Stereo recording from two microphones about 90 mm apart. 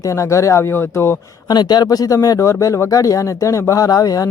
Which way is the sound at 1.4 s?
50° left (ahead or behind).